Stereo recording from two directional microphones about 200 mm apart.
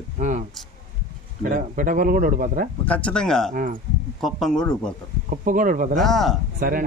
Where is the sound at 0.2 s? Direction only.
40° right (ahead or behind).